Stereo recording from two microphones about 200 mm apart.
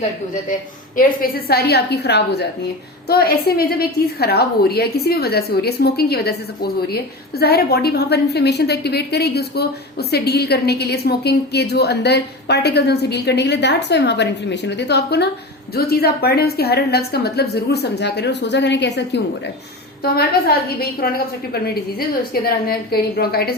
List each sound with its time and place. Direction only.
0.9 s a woman's voice: 50° left (ahead or behind)